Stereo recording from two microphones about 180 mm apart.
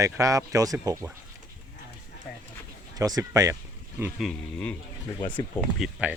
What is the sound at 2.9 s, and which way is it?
Speech, 20° right (ahead or behind).